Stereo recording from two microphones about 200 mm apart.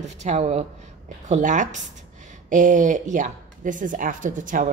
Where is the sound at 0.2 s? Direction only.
35° right (ahead or behind).